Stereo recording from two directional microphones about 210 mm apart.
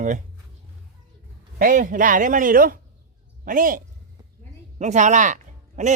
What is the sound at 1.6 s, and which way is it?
Speech, 40° right (ahead or behind).